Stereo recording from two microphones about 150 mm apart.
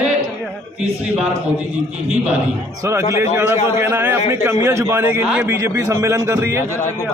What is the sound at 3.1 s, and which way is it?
A man's voice, 15° right (ahead or behind).